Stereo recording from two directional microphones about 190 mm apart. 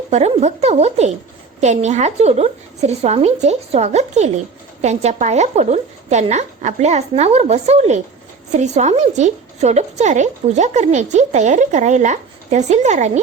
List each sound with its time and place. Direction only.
0.1 s a woman's voice: 35° right (ahead or behind)